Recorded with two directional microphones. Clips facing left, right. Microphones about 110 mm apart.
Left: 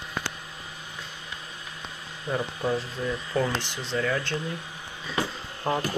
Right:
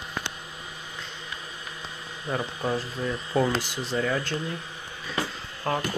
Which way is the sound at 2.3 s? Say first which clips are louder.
Left 1 dB; centre (ahead or behind).